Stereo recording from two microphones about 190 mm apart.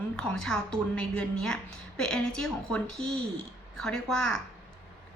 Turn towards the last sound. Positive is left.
turn(degrees=5)  # may be behind; listen again after turning